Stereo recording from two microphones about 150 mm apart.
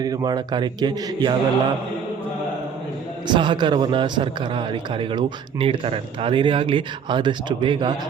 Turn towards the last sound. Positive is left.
turn(degrees=-30)  # may be behind; listen again after turning